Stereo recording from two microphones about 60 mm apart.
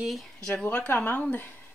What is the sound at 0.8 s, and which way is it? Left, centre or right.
Speech, left.